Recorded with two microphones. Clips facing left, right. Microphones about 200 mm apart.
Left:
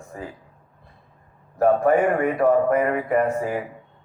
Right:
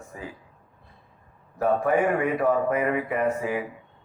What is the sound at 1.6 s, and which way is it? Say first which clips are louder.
A man's voice: left 4 dB; 45° left (ahead or behind).